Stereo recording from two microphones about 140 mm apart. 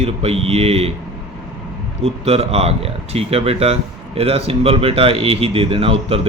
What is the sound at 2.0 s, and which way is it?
Speech, 45° right (ahead or behind).